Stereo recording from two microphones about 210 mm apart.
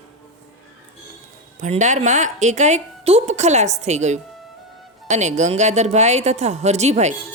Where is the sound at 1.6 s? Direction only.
35° right (ahead or behind).